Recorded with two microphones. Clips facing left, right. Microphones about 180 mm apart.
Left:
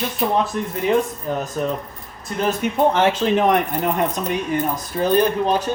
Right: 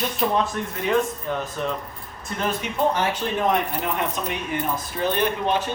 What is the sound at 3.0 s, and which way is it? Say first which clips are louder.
Speech: left 7 dB; 90° left.